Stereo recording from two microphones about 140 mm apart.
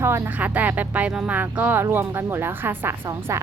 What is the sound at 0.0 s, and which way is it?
Speech, 20° right (ahead or behind).